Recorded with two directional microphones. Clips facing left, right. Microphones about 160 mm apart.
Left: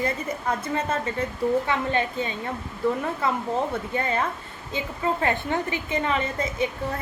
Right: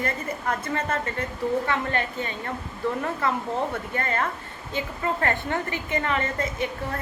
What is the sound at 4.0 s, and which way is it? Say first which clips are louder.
A woman's voice: left 1 dB; 15° left (ahead or behind).